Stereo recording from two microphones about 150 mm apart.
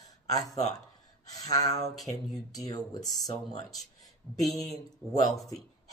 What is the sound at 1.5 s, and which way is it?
Speech, 25° left (ahead or behind).